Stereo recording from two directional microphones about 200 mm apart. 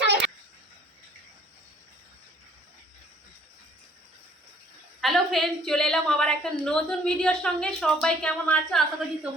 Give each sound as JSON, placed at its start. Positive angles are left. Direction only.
{"t": 4.9, "sound": "a woman's voice", "side_deg": 0}